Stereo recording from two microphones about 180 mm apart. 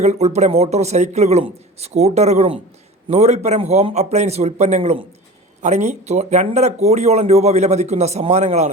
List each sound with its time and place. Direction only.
0.0 s speech: 40° right (ahead or behind)